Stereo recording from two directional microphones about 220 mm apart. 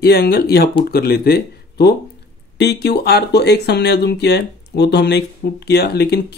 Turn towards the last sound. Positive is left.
turn(degrees=45)  # may be behind; listen again after turning